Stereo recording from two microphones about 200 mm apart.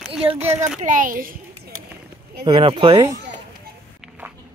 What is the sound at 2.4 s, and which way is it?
Speech, 25° right (ahead or behind).